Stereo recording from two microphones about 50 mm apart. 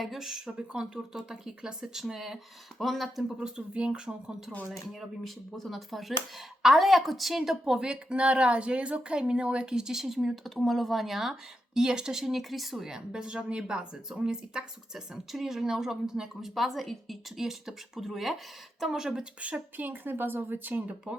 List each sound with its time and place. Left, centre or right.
0.0 s speech: centre
19.4 s speech: right
19.7 s a woman's voice: right